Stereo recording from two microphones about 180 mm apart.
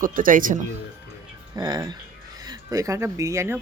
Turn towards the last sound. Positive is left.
turn(degrees=-15)  # may be behind; listen again after turning